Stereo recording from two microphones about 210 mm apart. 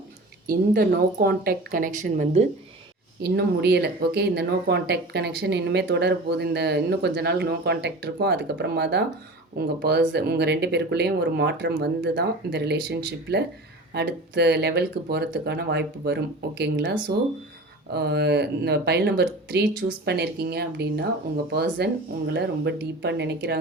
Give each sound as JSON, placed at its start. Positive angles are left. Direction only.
{"t": 0.4, "sound": "speech", "side_deg": -45}
{"t": 3.2, "sound": "speech", "side_deg": -50}